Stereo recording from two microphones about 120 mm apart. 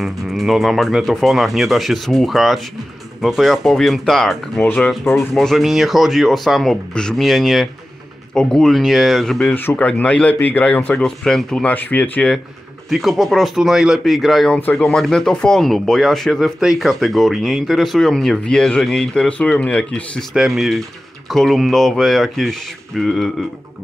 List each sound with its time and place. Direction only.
0.0 s speech: centre (ahead or behind)
5.0 s speech: 20° left (ahead or behind)
5.3 s speech: centre (ahead or behind)
9.5 s speech: 15° left (ahead or behind)